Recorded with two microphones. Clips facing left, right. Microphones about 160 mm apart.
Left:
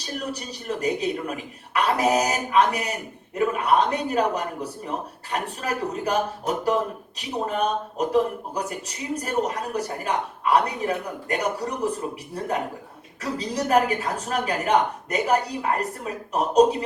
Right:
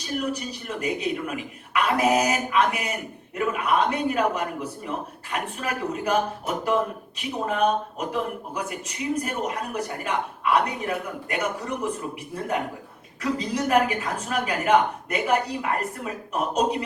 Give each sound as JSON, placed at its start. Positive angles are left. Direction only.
{"t": 0.0, "sound": "speech", "side_deg": 35}